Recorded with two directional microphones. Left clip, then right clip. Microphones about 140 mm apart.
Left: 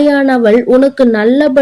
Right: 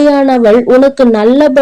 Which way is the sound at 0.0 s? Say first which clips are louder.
Right 2 dB; 25° right (ahead or behind).